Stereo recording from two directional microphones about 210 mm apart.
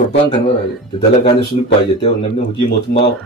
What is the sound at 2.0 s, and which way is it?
Speech, 30° left (ahead or behind).